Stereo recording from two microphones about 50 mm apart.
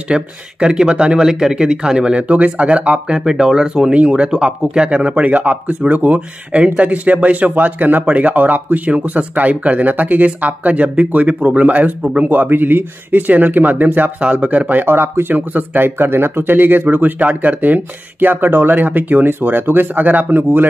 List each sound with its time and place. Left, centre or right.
0.1 s speech: centre
3.1 s speech: centre
12.3 s speech: right
14.9 s speech: right